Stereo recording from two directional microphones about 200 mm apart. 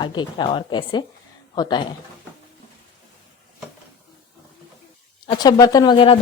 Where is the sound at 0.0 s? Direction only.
20° left (ahead or behind).